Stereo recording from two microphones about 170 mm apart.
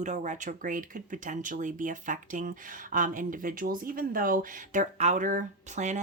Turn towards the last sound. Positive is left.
turn(degrees=-45)  # may be behind; listen again after turning